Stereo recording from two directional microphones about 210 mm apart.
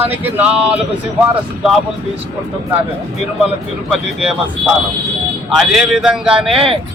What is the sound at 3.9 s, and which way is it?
Speech, 5° right (ahead or behind).